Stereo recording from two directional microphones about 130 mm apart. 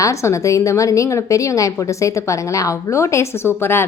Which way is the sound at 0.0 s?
25° left (ahead or behind).